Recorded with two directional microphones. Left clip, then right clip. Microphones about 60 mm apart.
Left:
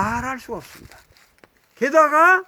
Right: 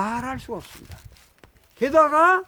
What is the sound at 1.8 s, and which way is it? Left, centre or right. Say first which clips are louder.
Speech: left 2 dB; centre.